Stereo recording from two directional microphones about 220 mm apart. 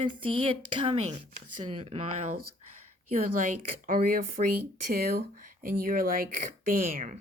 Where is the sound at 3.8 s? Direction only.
40° right (ahead or behind).